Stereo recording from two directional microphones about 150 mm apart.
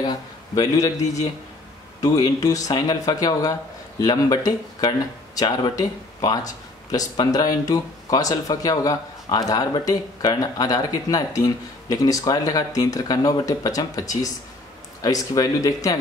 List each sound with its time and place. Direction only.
0.0 s a man's voice: 25° left (ahead or behind)